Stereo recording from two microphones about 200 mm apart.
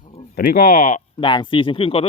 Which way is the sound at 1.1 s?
25° left (ahead or behind).